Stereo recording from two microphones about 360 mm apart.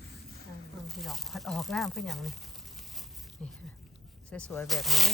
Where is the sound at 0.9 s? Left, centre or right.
Centre.